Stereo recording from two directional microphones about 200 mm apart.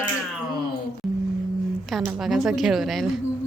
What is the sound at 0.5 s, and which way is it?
Speech, 50° left (ahead or behind).